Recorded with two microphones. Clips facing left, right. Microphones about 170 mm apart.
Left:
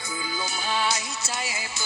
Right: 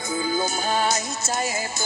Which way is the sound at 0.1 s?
45° right (ahead or behind).